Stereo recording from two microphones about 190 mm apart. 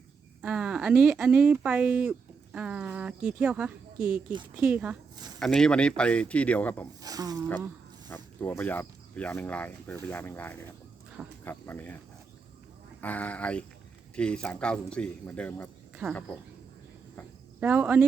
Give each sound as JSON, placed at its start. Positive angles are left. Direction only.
{"t": 0.4, "sound": "speech", "side_deg": -5}
{"t": 5.1, "sound": "speech", "side_deg": -20}
{"t": 5.4, "sound": "speech", "side_deg": 0}
{"t": 7.0, "sound": "speech", "side_deg": -20}
{"t": 8.1, "sound": "speech", "side_deg": 10}
{"t": 13.0, "sound": "speech", "side_deg": 10}
{"t": 16.0, "sound": "speech", "side_deg": -10}
{"t": 17.6, "sound": "speech", "side_deg": -10}